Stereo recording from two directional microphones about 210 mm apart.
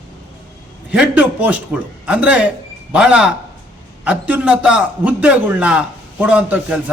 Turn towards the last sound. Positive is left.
turn(degrees=-5)  # may be behind; listen again after turning